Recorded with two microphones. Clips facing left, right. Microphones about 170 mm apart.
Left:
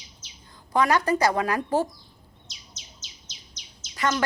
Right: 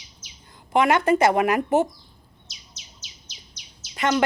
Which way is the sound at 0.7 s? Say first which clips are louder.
Right 3 dB; 25° right (ahead or behind).